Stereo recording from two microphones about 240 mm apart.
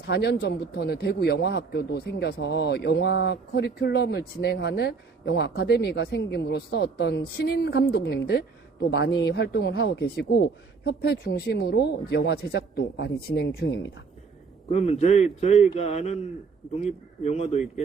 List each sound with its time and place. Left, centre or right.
0.1 s speech: left
14.7 s a man's voice: left